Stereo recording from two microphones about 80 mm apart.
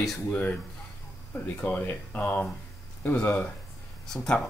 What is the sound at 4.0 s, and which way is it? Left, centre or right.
Speech, centre.